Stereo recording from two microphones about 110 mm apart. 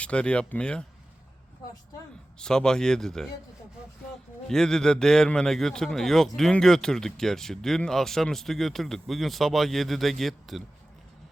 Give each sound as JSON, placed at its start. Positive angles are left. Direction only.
{"t": 0.0, "sound": "speech", "side_deg": 10}
{"t": 2.4, "sound": "a man's voice", "side_deg": 5}
{"t": 4.4, "sound": "a man's voice", "side_deg": 5}